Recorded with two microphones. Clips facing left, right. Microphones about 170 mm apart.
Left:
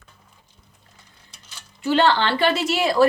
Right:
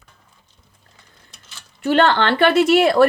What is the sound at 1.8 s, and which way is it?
A woman's voice, 55° right (ahead or behind).